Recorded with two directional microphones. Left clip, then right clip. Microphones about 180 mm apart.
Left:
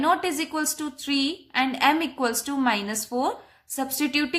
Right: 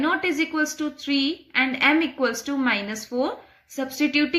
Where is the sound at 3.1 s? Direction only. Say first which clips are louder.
Right 2 dB; 35° left (ahead or behind).